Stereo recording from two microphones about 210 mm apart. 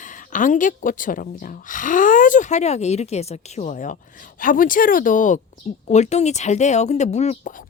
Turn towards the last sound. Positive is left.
turn(degrees=30)  # may be behind; listen again after turning